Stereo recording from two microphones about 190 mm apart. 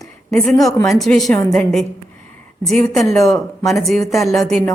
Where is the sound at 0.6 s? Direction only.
20° left (ahead or behind).